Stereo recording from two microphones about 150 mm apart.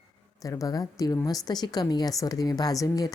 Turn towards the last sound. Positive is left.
turn(degrees=25)  # may be behind; listen again after turning